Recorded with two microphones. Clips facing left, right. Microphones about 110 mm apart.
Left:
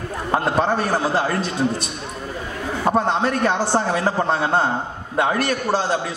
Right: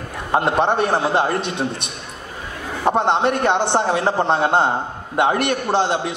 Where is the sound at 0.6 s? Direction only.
25° right (ahead or behind).